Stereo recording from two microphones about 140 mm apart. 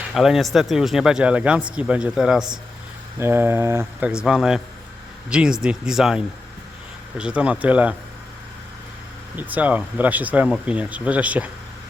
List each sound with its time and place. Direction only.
0.1 s speech: centre (ahead or behind)
3.2 s speech: 15° right (ahead or behind)
4.1 s speech: 5° right (ahead or behind)
9.3 s speech: 10° right (ahead or behind)